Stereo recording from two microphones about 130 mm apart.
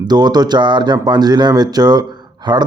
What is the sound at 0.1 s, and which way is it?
A man's voice, 30° right (ahead or behind).